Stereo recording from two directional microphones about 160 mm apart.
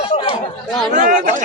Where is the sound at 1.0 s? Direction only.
55° right (ahead or behind).